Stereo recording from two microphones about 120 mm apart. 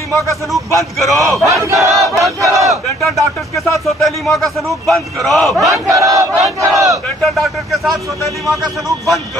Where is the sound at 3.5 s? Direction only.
25° left (ahead or behind).